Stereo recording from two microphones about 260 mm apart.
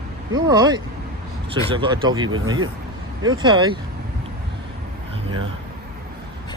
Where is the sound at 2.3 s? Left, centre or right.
Right.